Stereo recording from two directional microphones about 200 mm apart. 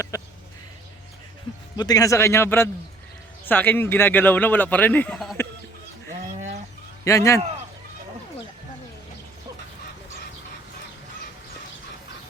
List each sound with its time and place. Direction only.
0.1 s a sound: 15° left (ahead or behind)
1.7 s a man's voice: 20° left (ahead or behind); by 5.4 s 5° left (ahead or behind)
7.0 s speech: 15° left (ahead or behind)